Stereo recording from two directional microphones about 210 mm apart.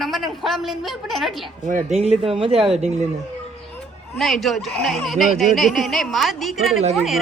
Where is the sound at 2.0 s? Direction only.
25° right (ahead or behind).